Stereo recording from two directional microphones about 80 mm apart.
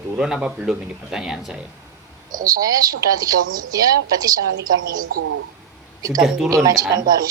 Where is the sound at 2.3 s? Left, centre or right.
Right.